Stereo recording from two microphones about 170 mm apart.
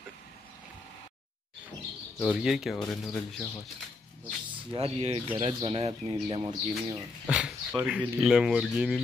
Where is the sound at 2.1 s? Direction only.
Centre (ahead or behind).